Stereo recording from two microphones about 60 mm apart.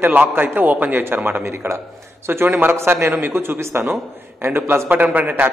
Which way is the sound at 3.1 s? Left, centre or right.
Right.